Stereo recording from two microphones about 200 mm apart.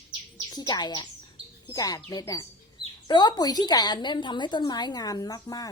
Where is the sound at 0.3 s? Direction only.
20° left (ahead or behind).